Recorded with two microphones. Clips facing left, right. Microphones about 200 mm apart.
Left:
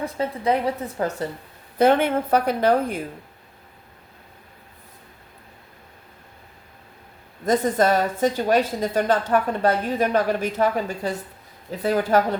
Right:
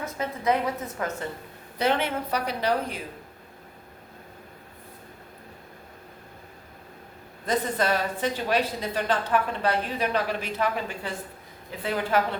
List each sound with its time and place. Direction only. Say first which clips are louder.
0.0 s a woman's voice: left 4 dB; 30° left (ahead or behind)
1.8 s a woman's voice: left 8 dB; 50° left (ahead or behind)
7.4 s a woman's voice: left 6 dB; 45° left (ahead or behind)